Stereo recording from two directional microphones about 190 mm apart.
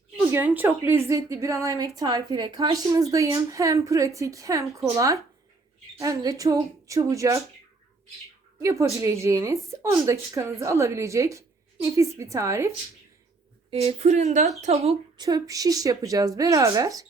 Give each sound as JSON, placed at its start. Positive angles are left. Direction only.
{"t": 0.2, "sound": "a woman's voice", "side_deg": -10}
{"t": 8.6, "sound": "a woman's voice", "side_deg": -15}
{"t": 13.7, "sound": "speech", "side_deg": -30}
{"t": 15.2, "sound": "a woman's voice", "side_deg": -20}